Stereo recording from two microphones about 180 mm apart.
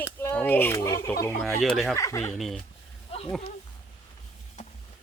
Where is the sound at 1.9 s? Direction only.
15° left (ahead or behind).